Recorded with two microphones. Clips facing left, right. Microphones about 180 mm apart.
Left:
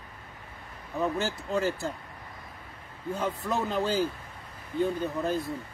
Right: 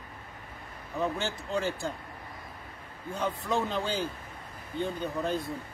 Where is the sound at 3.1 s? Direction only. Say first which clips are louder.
Even; 5° left (ahead or behind).